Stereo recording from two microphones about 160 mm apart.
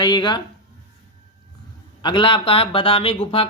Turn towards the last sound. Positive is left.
turn(degrees=35)  # may be behind; listen again after turning